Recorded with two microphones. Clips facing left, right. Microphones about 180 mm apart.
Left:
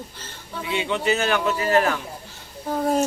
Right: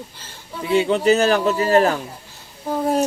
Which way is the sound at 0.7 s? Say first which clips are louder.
Right 7 dB; 35° right (ahead or behind).